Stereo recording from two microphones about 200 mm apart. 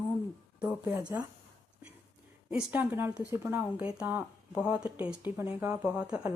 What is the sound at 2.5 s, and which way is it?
Speech, 10° right (ahead or behind).